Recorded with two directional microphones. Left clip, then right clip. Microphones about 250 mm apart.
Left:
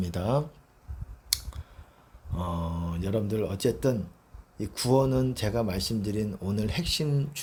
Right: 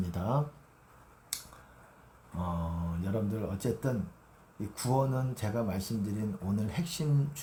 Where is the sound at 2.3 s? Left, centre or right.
Left.